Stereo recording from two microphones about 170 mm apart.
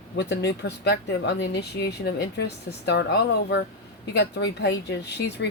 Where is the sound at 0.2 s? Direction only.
80° left.